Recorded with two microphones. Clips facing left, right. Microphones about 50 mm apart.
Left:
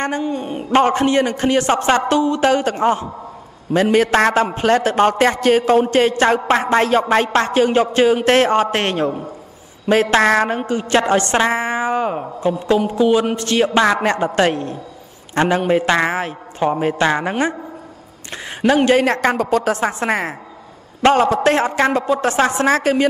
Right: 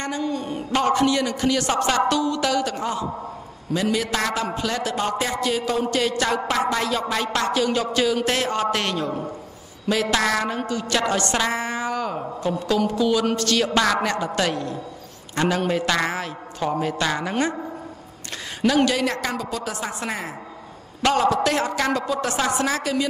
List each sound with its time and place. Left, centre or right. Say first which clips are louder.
0.2 s a sound: left 4 dB; left
0.7 s a man's voice: left 5 dB; left
18.9 s a woman's voice: left 9 dB; left